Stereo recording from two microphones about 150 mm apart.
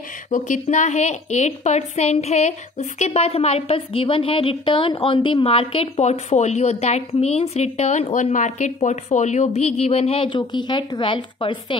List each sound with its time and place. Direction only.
0.3 s a woman's voice: 55° left (ahead or behind); by 11.8 s 35° left (ahead or behind)